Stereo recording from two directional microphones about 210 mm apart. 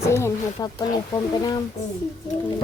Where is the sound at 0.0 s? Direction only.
15° left (ahead or behind).